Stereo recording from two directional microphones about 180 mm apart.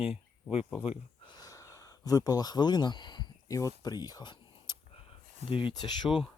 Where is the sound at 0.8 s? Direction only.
30° left (ahead or behind).